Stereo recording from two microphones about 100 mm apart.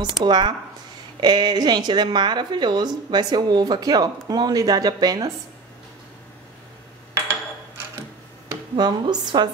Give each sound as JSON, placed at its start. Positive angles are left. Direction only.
{"t": 0.0, "sound": "a woman's voice", "side_deg": -50}
{"t": 8.7, "sound": "a woman's voice", "side_deg": -45}